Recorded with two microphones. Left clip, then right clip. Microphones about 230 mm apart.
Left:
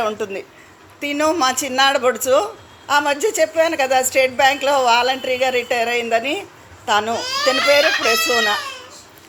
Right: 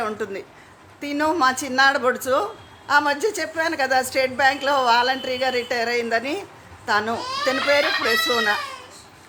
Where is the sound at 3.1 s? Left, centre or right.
Right.